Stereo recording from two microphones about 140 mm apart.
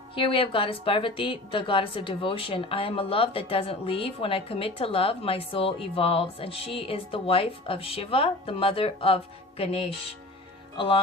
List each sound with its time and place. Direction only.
0.1 s a woman's voice: 40° left (ahead or behind)